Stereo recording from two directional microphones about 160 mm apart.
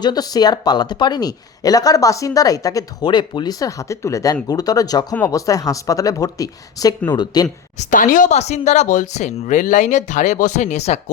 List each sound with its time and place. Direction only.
0.0 s speech: 25° left (ahead or behind)
7.8 s speech: 55° left (ahead or behind)